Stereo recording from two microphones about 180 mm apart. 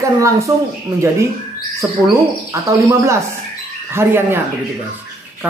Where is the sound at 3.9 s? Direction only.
10° right (ahead or behind).